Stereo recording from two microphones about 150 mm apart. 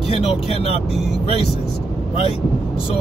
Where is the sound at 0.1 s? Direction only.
40° left (ahead or behind).